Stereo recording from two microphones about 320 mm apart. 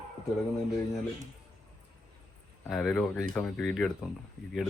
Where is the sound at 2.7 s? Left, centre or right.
Centre.